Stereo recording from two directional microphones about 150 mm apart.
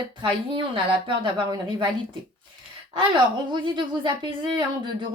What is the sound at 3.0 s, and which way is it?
A woman's voice, 35° right (ahead or behind).